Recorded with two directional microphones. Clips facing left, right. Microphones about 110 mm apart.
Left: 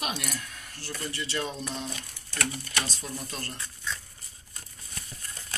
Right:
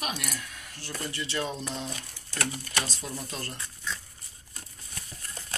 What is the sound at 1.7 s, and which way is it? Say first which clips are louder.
Speech: even; 20° right (ahead or behind).